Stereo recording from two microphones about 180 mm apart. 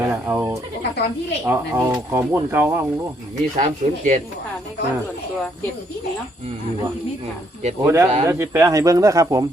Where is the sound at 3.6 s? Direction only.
40° right (ahead or behind).